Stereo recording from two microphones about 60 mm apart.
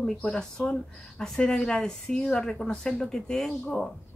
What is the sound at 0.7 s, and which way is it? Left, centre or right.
Speech, centre.